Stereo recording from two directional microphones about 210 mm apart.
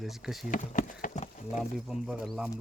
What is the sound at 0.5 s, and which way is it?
Speech, 40° left (ahead or behind).